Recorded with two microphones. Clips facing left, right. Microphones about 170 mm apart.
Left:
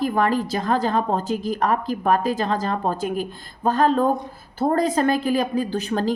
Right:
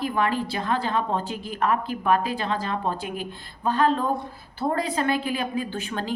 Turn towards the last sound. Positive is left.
turn(degrees=40)  # may be behind; listen again after turning